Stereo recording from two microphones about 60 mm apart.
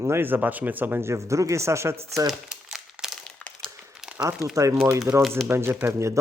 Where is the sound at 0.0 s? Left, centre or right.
Right.